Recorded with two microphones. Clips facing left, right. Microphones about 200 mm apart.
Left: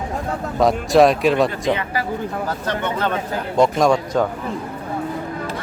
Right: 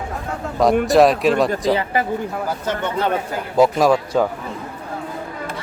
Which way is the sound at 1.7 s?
25° right (ahead or behind).